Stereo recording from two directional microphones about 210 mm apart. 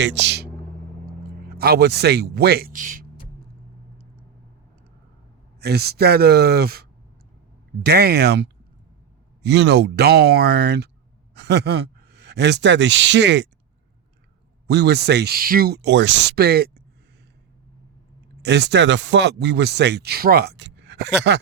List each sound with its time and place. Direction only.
0.0 s speech: 55° right (ahead or behind); by 3.1 s 40° right (ahead or behind)
5.5 s speech: 50° right (ahead or behind)
7.9 s speech: 50° right (ahead or behind)
14.7 s speech: 50° right (ahead or behind)
18.4 s speech: 55° right (ahead or behind)